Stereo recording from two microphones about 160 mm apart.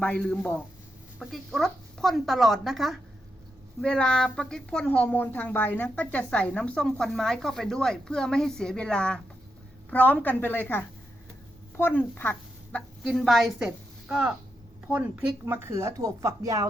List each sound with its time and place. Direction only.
0.0 s a woman's voice: 10° left (ahead or behind); by 16.6 s 20° right (ahead or behind)